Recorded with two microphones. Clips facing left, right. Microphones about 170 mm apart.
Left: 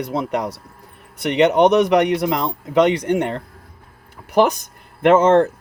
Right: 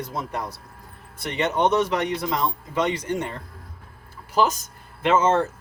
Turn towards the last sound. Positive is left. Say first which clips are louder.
# left 7 dB
turn(degrees=60)  # may be behind; listen again after turning